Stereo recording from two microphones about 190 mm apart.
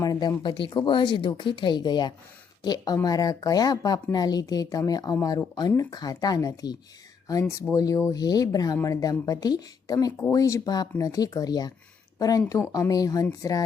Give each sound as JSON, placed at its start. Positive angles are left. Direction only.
{"t": 0.0, "sound": "speech", "side_deg": 20}